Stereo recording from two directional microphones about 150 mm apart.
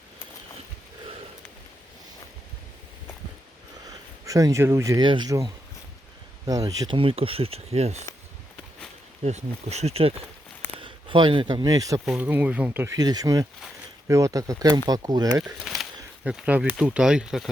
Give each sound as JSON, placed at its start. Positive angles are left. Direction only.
{"t": 3.8, "sound": "speech", "side_deg": -25}
{"t": 5.0, "sound": "speech", "side_deg": -30}
{"t": 9.2, "sound": "speech", "side_deg": -45}
{"t": 12.0, "sound": "speech", "side_deg": -10}
{"t": 13.0, "sound": "speech", "side_deg": -25}
{"t": 15.8, "sound": "speech", "side_deg": -5}